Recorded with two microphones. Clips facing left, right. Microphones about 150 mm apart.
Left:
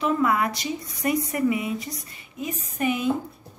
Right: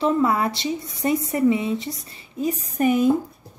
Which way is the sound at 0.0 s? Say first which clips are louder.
Right 3 dB; 30° right (ahead or behind).